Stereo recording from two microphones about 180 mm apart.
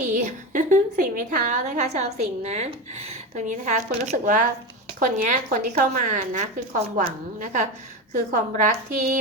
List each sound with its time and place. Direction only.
0.0 s a woman's voice: 45° right (ahead or behind)